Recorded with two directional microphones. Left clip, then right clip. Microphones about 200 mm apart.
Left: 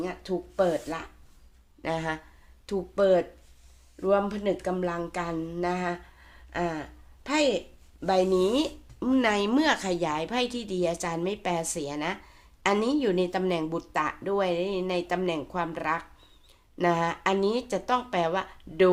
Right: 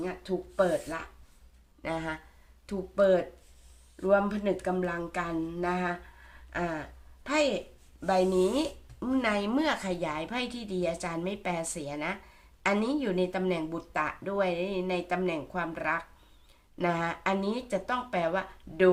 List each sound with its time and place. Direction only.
0.0 s speech: 35° left (ahead or behind)